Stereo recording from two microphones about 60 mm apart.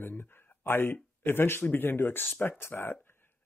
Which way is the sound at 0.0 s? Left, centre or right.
Left.